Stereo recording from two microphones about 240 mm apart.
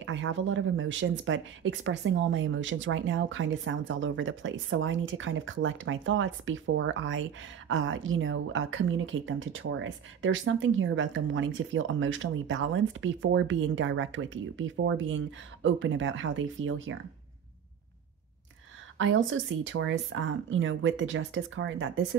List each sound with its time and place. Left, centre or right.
0.0 s speech: right
18.9 s speech: right